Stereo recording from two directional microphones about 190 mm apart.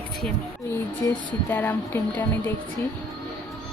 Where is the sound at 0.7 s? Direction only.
10° left (ahead or behind).